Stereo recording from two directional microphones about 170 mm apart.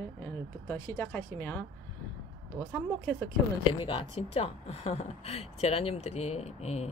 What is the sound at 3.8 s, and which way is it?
Speech, 30° left (ahead or behind).